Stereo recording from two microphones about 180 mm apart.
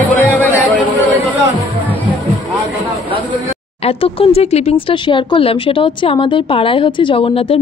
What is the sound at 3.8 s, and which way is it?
Speech, 30° left (ahead or behind).